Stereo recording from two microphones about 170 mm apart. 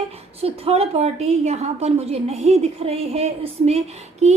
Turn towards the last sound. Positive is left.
turn(degrees=-40)  # may be behind; listen again after turning